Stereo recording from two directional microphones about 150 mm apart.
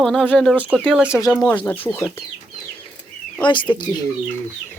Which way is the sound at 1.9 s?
15° left (ahead or behind).